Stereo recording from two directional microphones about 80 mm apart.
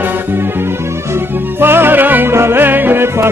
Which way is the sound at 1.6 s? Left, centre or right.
Right.